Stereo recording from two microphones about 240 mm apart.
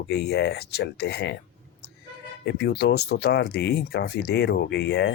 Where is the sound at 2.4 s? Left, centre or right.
Left.